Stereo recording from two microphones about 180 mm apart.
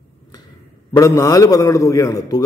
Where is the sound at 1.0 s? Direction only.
15° left (ahead or behind).